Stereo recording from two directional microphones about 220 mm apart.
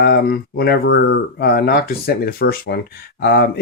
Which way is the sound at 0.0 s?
45° left (ahead or behind).